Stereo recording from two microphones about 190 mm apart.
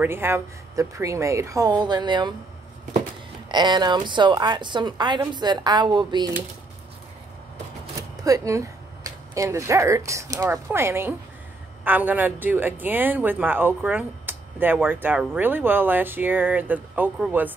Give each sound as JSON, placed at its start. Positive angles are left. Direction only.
{"t": 0.0, "sound": "speech", "side_deg": -10}
{"t": 3.5, "sound": "a woman's voice", "side_deg": -25}
{"t": 8.2, "sound": "speech", "side_deg": -15}